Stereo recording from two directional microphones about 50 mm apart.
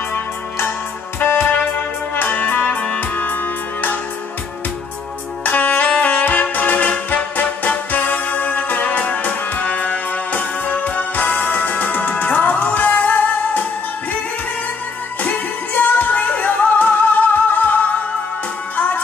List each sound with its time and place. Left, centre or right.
0.1 s music: left
5.4 s music: left
15.2 s music: left